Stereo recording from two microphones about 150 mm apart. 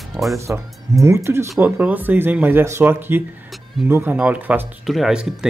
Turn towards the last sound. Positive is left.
turn(degrees=0)  # may be behind; listen again after turning